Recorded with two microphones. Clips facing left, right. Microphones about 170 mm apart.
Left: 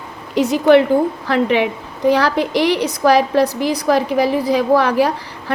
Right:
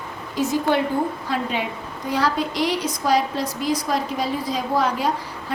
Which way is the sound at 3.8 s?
85° left.